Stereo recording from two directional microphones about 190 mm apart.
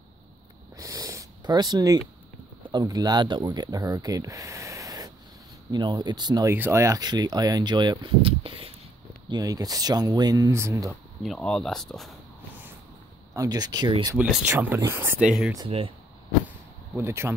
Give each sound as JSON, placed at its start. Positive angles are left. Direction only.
{"t": 0.7, "sound": "snort", "side_deg": -20}
{"t": 2.7, "sound": "speech", "side_deg": -20}
{"t": 9.3, "sound": "speech", "side_deg": -20}
{"t": 11.2, "sound": "speech", "side_deg": 5}
{"t": 13.3, "sound": "speech", "side_deg": -20}
{"t": 14.5, "sound": "speech", "side_deg": -15}
{"t": 15.5, "sound": "speech", "side_deg": -25}
{"t": 16.9, "sound": "speech", "side_deg": -15}